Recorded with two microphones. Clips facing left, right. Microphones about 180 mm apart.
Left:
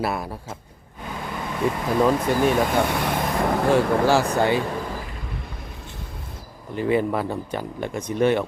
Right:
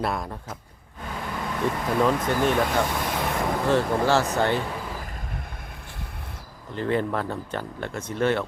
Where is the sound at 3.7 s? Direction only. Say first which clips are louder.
Left 2 dB; 10° left (ahead or behind).